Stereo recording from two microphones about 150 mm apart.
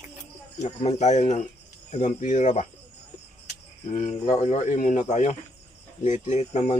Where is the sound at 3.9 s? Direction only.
55° left (ahead or behind).